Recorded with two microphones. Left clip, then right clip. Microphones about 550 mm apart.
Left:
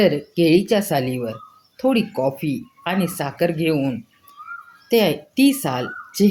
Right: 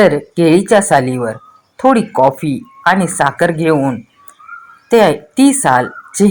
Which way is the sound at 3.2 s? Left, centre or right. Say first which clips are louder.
Right 9 dB; left.